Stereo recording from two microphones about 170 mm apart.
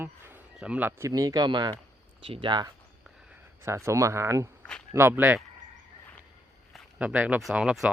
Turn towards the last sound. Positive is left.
turn(degrees=-5)  # may be behind; listen again after turning